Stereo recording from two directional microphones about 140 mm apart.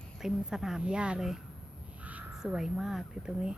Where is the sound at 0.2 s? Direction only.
5° right (ahead or behind).